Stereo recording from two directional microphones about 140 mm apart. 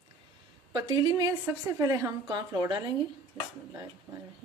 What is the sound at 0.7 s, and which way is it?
A woman's voice, 30° right (ahead or behind).